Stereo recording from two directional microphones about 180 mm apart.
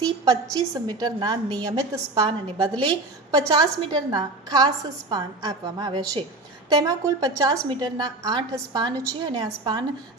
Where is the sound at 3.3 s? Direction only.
20° right (ahead or behind).